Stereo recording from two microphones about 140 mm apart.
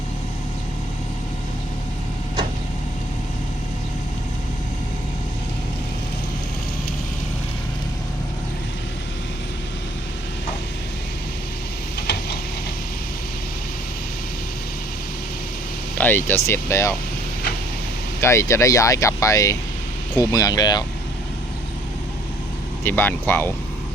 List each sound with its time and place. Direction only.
16.0 s speech: 15° left (ahead or behind)
18.2 s speech: 20° left (ahead or behind)
22.8 s speech: 15° left (ahead or behind)